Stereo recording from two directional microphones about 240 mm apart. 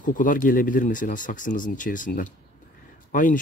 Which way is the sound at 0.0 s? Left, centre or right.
Left.